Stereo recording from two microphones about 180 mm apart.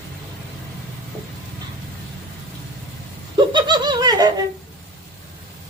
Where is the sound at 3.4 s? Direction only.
25° right (ahead or behind).